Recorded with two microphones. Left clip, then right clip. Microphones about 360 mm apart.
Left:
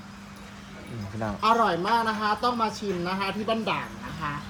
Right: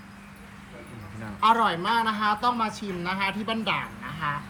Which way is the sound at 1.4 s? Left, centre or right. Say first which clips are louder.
Right 1 dB; right.